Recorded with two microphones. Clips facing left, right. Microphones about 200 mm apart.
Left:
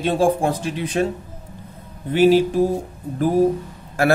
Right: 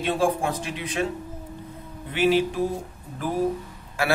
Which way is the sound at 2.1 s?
40° left (ahead or behind).